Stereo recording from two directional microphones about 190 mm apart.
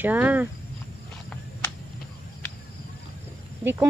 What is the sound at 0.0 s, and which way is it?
Speech, 10° right (ahead or behind).